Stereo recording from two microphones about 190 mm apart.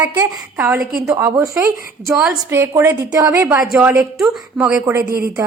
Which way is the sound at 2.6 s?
15° right (ahead or behind).